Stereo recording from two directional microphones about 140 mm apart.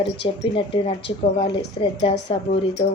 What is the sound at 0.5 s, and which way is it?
A woman's voice, 40° left (ahead or behind).